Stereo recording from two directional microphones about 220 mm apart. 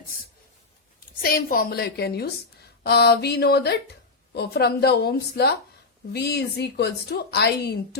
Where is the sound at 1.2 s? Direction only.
40° left (ahead or behind).